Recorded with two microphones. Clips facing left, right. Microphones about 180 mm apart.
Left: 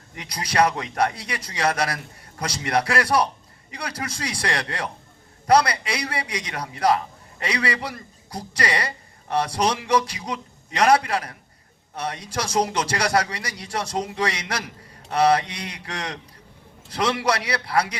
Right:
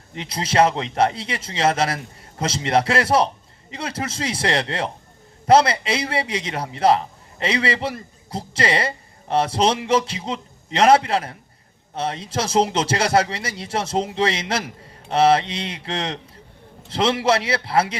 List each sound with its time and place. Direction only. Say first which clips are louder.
0.1 s a man's voice: right 5 dB; 25° right (ahead or behind)